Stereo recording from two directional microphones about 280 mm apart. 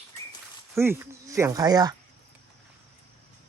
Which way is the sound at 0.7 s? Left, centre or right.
Centre.